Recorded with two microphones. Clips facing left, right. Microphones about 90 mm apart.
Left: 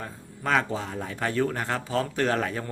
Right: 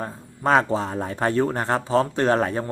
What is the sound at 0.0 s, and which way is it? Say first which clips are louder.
Speech: right 7 dB; 35° right (ahead or behind).